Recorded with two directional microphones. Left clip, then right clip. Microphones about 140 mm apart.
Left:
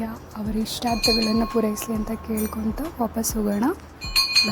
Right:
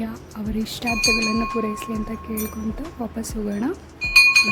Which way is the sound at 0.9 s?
10° left (ahead or behind).